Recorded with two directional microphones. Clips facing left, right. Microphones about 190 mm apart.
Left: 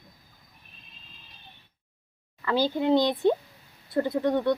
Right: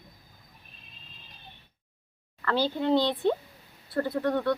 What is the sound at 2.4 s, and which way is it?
Speech, 15° left (ahead or behind).